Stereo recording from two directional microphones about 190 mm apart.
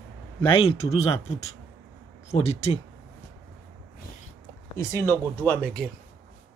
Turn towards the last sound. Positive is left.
turn(degrees=5)  # may be behind; listen again after turning